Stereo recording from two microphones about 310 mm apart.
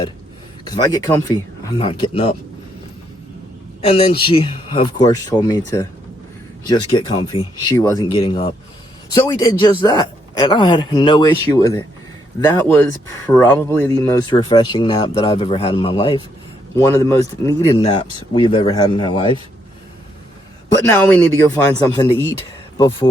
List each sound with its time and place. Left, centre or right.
0.7 s speech: centre
3.8 s speech: centre
20.7 s speech: centre